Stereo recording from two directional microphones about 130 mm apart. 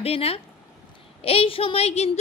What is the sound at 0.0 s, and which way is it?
A woman's voice, 50° left (ahead or behind).